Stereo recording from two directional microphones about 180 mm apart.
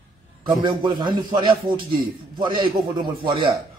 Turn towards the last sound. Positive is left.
turn(degrees=-25)  # may be behind; listen again after turning